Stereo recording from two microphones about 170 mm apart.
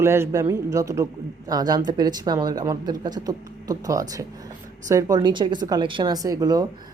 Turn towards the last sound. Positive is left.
turn(degrees=-25)  # may be behind; listen again after turning